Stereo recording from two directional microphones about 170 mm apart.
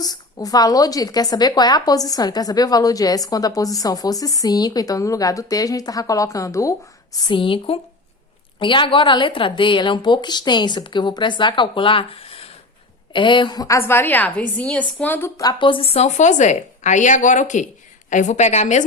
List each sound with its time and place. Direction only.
0.0 s a woman's voice: 20° left (ahead or behind)
7.3 s a woman's voice: 30° left (ahead or behind); by 15.3 s 10° left (ahead or behind)
15.4 s a woman's voice: 25° left (ahead or behind); by 18.9 s 45° left (ahead or behind)